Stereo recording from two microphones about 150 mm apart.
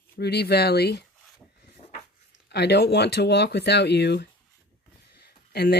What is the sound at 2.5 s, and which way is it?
Speech, 90° left.